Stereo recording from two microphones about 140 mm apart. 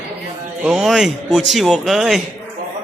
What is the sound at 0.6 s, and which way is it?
A man's voice, 5° right (ahead or behind).